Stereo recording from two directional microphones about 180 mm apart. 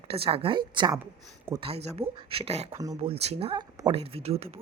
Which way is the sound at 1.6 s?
35° right (ahead or behind).